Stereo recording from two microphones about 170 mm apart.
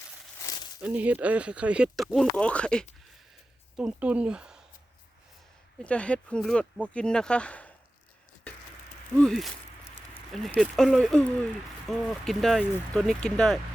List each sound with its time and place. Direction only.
0.4 s a sound: 25° left (ahead or behind)
0.8 s speech: 10° right (ahead or behind)
2.1 s speech: 5° left (ahead or behind)
3.8 s speech: 5° right (ahead or behind)
5.8 s speech: 5° left (ahead or behind)
9.1 s speech: 5° left (ahead or behind)